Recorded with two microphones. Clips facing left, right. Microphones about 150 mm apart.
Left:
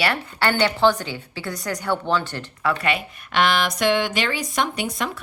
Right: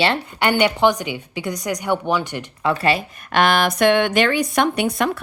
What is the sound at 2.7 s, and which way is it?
Speech, 30° right (ahead or behind).